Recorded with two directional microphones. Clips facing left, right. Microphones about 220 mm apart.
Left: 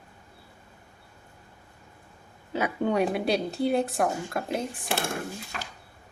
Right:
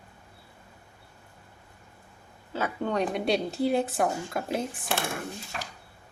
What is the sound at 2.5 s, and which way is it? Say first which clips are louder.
Speech: left 3 dB; 15° left (ahead or behind).